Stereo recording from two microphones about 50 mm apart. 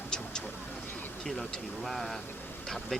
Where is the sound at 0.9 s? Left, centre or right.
Left.